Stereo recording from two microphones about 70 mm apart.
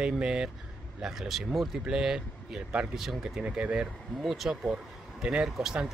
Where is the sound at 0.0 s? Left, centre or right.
Centre.